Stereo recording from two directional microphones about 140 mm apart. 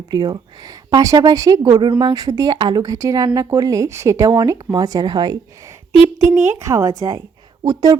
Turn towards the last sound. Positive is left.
turn(degrees=-30)  # may be behind; listen again after turning